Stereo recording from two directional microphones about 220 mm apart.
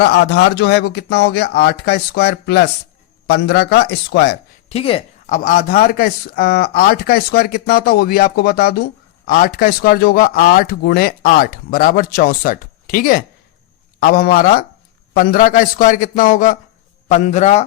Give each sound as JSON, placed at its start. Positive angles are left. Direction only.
{"t": 0.0, "sound": "speech", "side_deg": 50}
{"t": 4.7, "sound": "speech", "side_deg": 25}